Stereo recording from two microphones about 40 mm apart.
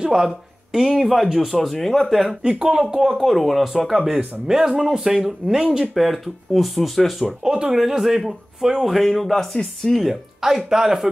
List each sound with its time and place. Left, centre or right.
0.1 s speech: centre
2.4 s speech: centre
5.9 s speech: centre
7.2 s speech: centre
9.9 s speech: centre